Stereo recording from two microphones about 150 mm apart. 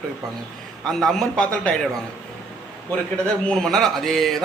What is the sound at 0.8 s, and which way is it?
Speech, centre (ahead or behind).